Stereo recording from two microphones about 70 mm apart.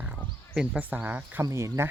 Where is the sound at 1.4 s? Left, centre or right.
Right.